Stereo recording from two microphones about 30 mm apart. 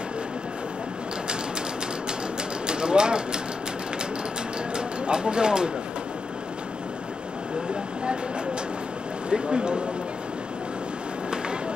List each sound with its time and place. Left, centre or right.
2.6 s a sound: right
4.7 s speech: right
9.3 s speech: right